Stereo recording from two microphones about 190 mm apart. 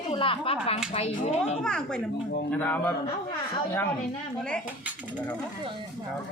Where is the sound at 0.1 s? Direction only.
30° left (ahead or behind).